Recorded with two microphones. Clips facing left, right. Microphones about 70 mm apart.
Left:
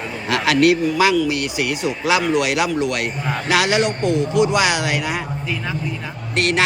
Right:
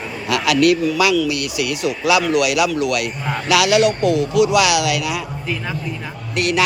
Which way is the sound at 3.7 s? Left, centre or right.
Centre.